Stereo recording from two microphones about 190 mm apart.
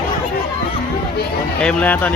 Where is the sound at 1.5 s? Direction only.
5° left (ahead or behind).